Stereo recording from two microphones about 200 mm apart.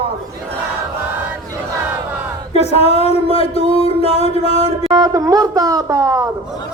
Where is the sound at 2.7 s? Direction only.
30° left (ahead or behind).